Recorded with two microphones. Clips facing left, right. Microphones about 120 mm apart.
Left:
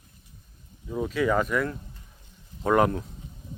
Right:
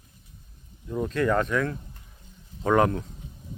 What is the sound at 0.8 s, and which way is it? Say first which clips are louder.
Speech: even; 5° left (ahead or behind).